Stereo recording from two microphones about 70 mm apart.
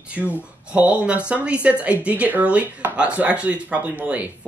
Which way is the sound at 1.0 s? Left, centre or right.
Centre.